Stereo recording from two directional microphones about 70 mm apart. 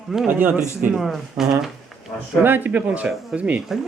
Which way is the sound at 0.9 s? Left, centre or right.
Centre.